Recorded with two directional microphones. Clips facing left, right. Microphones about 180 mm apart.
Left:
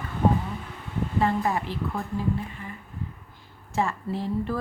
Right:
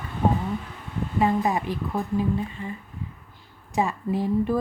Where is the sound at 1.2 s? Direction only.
15° right (ahead or behind).